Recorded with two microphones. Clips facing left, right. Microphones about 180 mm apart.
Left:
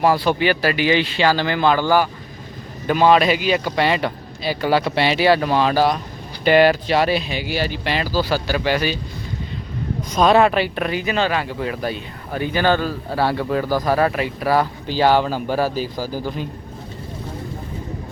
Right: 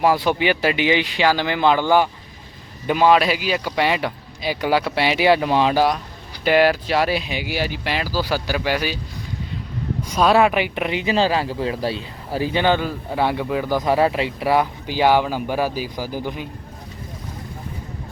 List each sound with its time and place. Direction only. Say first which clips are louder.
0.0 s speech: left 1 dB; 15° right (ahead or behind)
10.1 s speech: left 1 dB; 5° right (ahead or behind); by 12.6 s 30° right (ahead or behind)
12.6 s speech: left 1 dB; 15° right (ahead or behind)
13.7 s speech: right 2 dB; 20° right (ahead or behind)